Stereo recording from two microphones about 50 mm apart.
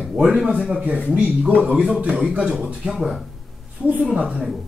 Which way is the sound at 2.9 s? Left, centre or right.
Centre.